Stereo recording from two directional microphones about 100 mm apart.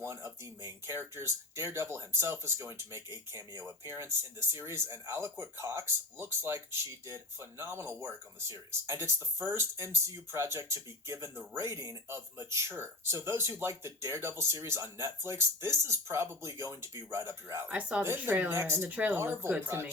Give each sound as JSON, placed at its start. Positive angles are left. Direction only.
{"t": 0.0, "sound": "speech", "side_deg": -25}
{"t": 17.7, "sound": "speech", "side_deg": -15}
{"t": 18.0, "sound": "speech", "side_deg": -25}
{"t": 18.9, "sound": "speech", "side_deg": -15}